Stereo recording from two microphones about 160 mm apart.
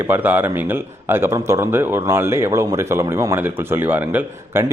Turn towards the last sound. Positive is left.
turn(degrees=-10)  # may be behind; listen again after turning